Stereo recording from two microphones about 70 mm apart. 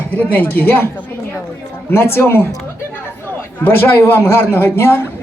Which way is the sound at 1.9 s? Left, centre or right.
Left.